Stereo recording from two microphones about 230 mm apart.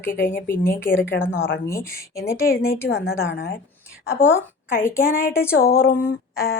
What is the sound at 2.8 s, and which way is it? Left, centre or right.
Speech, left.